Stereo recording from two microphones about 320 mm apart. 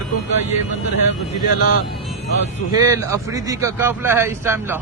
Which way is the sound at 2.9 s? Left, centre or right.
Centre.